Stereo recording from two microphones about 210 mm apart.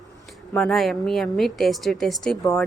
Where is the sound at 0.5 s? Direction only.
Centre (ahead or behind).